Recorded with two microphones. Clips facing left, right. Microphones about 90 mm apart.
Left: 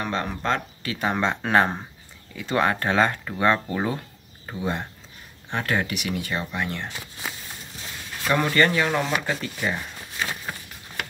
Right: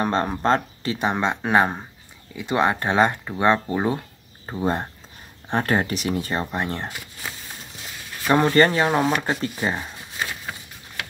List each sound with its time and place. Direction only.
0.0 s speech: 35° right (ahead or behind)
0.9 s speech: 20° right (ahead or behind)
4.5 s speech: 40° right (ahead or behind)
8.3 s speech: 30° right (ahead or behind)